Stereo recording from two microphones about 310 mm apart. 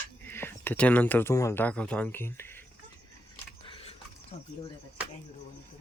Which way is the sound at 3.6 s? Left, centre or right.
Centre.